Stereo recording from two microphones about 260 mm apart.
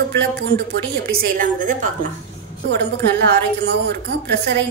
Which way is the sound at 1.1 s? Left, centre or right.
Right.